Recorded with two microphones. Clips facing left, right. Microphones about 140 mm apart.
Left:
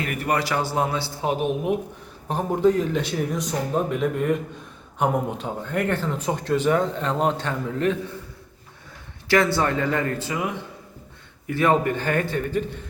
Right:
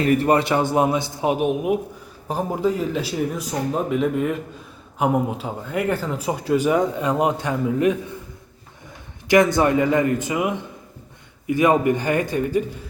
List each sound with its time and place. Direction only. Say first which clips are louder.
0.0 s a man's voice: right 7 dB; 30° right (ahead or behind); by 7.9 s 10° right (ahead or behind)
9.2 s speech: right 4 dB; 15° right (ahead or behind)